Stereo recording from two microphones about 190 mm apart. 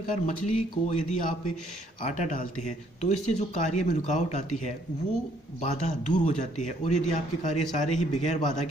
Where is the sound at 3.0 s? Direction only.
35° left (ahead or behind).